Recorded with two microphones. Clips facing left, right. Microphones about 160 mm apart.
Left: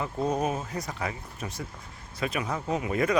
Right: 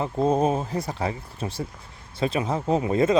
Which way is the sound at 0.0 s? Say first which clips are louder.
Right 6 dB; 30° right (ahead or behind).